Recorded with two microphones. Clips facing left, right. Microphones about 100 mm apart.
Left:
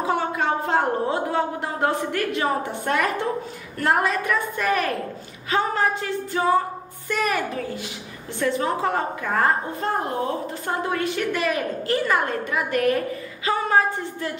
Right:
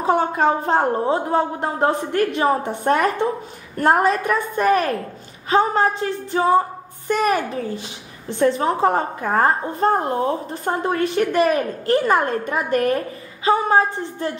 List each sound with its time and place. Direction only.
0.0 s a woman's voice: 35° right (ahead or behind)